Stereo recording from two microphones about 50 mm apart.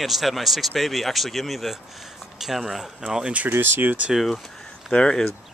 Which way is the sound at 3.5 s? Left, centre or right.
Right.